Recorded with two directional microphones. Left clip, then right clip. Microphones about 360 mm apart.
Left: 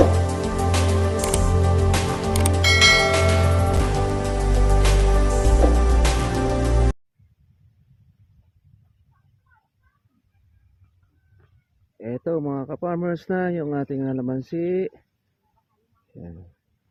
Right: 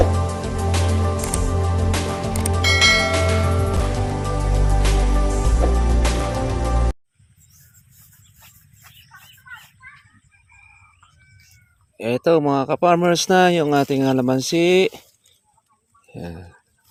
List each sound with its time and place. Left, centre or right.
0.0 s music: centre
11.9 s speech: centre